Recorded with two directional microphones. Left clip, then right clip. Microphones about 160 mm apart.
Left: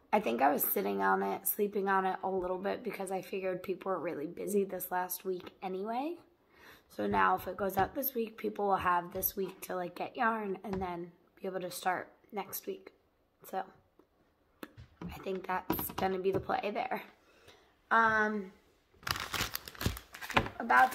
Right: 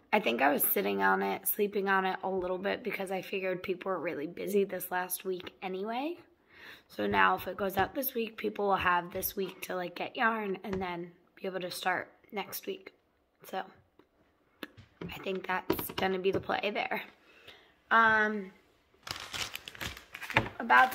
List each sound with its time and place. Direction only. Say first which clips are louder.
0.1 s speech: right 1 dB; centre (ahead or behind)
14.6 s speech: right 4 dB; centre (ahead or behind)
19.0 s scissors: left 3 dB; 90° left
20.5 s speech: right 3 dB; 10° left (ahead or behind)